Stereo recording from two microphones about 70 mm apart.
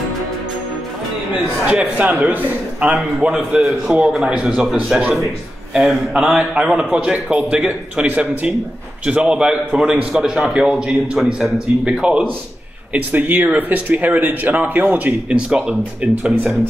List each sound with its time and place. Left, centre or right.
1.7 s a man's voice: centre
5.8 s a man's voice: centre; by 15.1 s right
15.2 s a man's voice: centre